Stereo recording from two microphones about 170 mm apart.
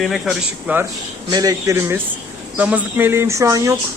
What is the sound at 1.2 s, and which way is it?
Speech, 20° right (ahead or behind).